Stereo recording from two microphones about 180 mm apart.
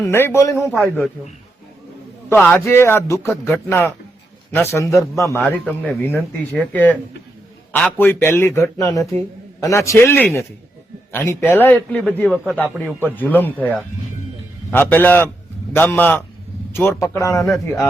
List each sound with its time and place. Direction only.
0.0 s a man's voice: 15° left (ahead or behind)
2.3 s a man's voice: 10° left (ahead or behind)
12.6 s speech: 5° right (ahead or behind)
13.1 s a man's voice: 10° left (ahead or behind)